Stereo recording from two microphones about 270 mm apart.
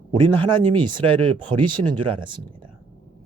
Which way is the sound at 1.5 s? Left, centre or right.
Centre.